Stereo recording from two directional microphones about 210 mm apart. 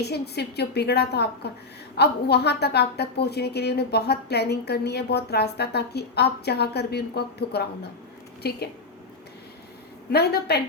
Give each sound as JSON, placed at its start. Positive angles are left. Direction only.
{"t": 0.0, "sound": "a woman's voice", "side_deg": 50}
{"t": 10.1, "sound": "a woman's voice", "side_deg": 50}